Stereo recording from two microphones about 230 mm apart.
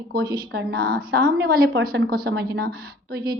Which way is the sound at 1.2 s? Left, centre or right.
Right.